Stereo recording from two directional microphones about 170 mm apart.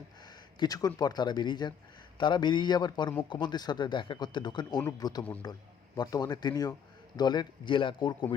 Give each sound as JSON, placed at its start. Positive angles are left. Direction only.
{"t": 0.3, "sound": "speech", "side_deg": 25}